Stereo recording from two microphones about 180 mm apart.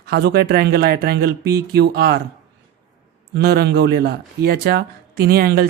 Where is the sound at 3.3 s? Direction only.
60° right (ahead or behind).